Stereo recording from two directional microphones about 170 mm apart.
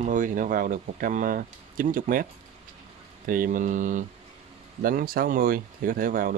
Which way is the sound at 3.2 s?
55° right (ahead or behind).